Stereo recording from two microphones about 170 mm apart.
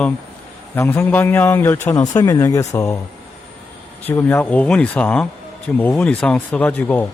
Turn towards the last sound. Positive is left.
turn(degrees=10)  # may be behind; listen again after turning